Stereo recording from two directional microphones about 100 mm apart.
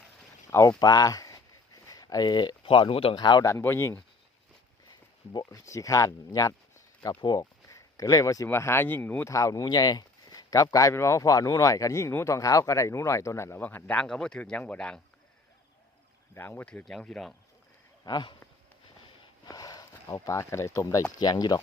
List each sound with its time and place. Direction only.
0.8 s a sound: 40° left (ahead or behind); by 3.2 s 65° left (ahead or behind)
3.2 s speech: 45° left (ahead or behind)
3.4 s speech: 25° left (ahead or behind)
5.5 s speech: 35° left (ahead or behind)
8.4 s speech: 25° left (ahead or behind)
9.3 s speech: 35° left (ahead or behind)
13.6 s speech: 15° left (ahead or behind)
16.3 s speech: 20° left (ahead or behind)
16.8 s speech: 5° left (ahead or behind)
18.0 s speech: 50° left (ahead or behind)
19.5 s speech: 40° left (ahead or behind)